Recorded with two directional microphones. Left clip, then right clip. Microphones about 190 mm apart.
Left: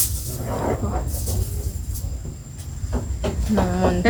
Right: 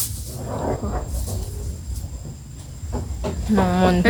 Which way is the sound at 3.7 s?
25° right (ahead or behind).